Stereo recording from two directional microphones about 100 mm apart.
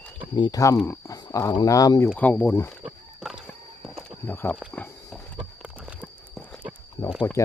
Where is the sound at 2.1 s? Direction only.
15° left (ahead or behind).